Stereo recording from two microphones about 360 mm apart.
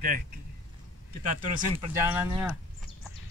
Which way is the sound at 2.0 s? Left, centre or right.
Centre.